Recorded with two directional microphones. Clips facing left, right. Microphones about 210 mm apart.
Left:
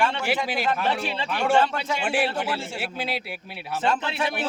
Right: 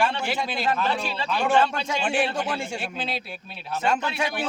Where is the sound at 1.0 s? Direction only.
25° left (ahead or behind).